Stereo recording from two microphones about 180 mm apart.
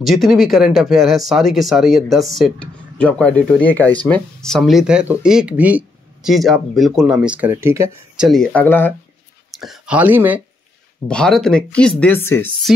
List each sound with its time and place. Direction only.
0.0 s speech: centre (ahead or behind); by 7.9 s 15° right (ahead or behind)
8.2 s speech: centre (ahead or behind)
9.6 s speech: 5° right (ahead or behind)
11.1 s speech: 5° left (ahead or behind)